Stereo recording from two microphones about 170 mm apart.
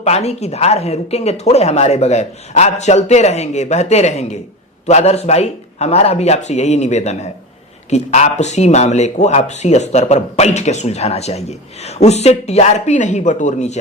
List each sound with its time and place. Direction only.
0.0 s speech: 40° left (ahead or behind)